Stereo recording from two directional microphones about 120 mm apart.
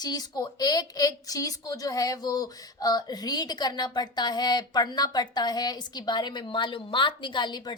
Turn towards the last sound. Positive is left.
turn(degrees=35)  # may be behind; listen again after turning